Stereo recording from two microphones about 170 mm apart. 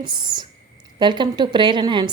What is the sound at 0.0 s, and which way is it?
A woman's voice, 25° right (ahead or behind).